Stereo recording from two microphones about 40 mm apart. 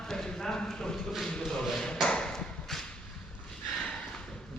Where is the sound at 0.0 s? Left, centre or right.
Centre.